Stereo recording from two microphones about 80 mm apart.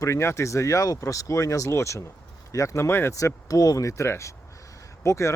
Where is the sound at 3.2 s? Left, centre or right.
Left.